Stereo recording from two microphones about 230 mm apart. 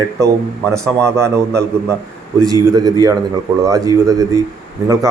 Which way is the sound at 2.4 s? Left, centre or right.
Centre.